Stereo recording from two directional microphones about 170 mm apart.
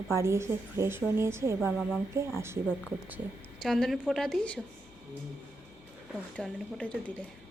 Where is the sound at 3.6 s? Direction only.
Centre (ahead or behind).